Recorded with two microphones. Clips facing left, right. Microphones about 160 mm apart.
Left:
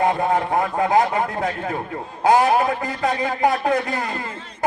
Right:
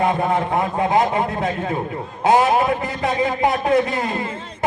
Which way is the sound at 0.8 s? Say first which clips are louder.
Even; 25° right (ahead or behind).